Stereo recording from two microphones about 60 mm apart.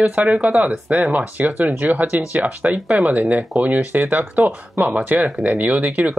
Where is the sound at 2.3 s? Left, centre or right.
Right.